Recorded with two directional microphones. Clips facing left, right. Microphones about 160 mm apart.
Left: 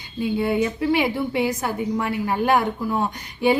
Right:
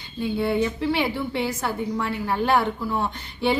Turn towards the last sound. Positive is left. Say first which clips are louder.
# left 4 dB
turn(degrees=15)  # may be behind; listen again after turning